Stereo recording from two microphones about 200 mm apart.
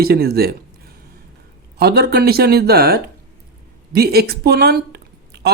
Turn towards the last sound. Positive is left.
turn(degrees=-55)  # may be behind; listen again after turning